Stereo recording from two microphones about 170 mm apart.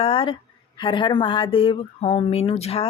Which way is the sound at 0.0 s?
30° left (ahead or behind).